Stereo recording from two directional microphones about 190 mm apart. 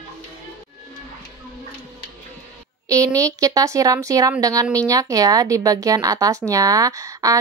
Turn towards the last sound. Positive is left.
turn(degrees=-15)  # may be behind; listen again after turning